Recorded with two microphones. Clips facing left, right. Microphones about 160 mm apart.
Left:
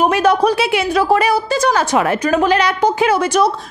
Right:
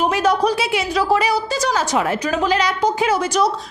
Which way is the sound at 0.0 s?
60° left (ahead or behind).